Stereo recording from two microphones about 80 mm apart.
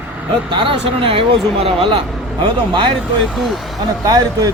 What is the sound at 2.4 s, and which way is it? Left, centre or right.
Speech, right.